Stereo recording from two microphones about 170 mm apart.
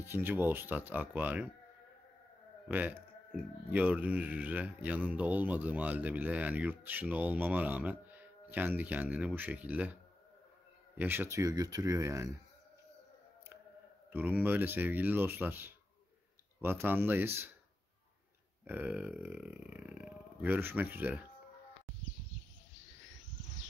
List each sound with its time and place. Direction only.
0.0 s speech: 15° right (ahead or behind)
2.7 s speech: 10° right (ahead or behind)
11.0 s speech: 10° right (ahead or behind)
14.1 s speech: 10° right (ahead or behind)
18.7 s speech: 10° right (ahead or behind)